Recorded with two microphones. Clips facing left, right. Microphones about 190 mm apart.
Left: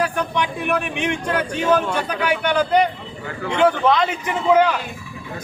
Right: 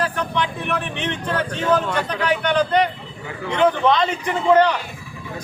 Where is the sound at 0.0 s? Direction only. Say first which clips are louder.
Left 1 dB; 10° left (ahead or behind).